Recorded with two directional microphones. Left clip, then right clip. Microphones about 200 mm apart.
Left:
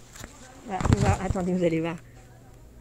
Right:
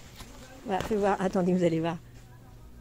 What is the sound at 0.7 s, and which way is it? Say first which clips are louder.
Speech: even; 35° right (ahead or behind).